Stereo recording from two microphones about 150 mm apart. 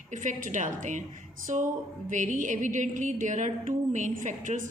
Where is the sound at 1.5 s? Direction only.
50° right (ahead or behind).